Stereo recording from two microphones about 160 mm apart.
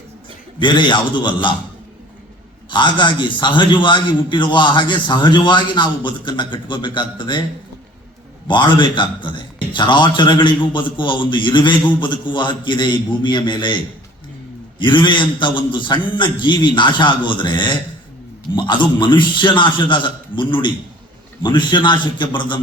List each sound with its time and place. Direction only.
0.6 s a man's voice: 30° left (ahead or behind)
2.6 s a man's voice: 30° left (ahead or behind)
8.4 s a man's voice: 30° left (ahead or behind)